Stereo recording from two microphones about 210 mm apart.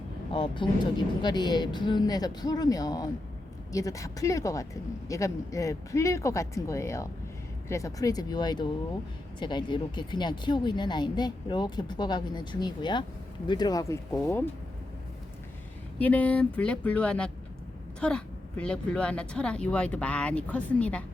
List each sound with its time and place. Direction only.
0.3 s speech: 25° left (ahead or behind)
16.0 s speech: 5° left (ahead or behind)